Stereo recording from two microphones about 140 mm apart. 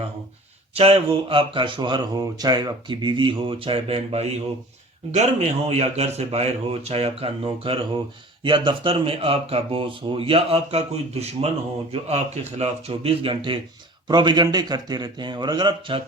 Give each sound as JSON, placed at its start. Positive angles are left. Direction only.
{"t": 0.8, "sound": "speech", "side_deg": -40}